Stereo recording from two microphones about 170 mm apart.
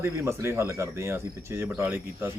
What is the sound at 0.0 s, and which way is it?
Speech, 15° right (ahead or behind).